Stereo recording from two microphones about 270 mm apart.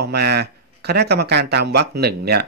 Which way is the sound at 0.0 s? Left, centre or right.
Right.